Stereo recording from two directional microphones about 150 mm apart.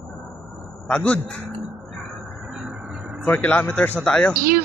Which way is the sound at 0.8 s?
5° left (ahead or behind).